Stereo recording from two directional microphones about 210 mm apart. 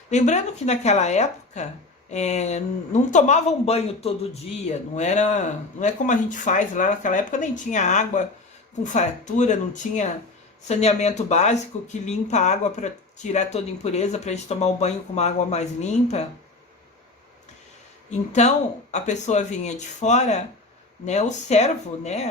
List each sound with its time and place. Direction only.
0.1 s speech: 35° left (ahead or behind)
18.3 s speech: 35° left (ahead or behind)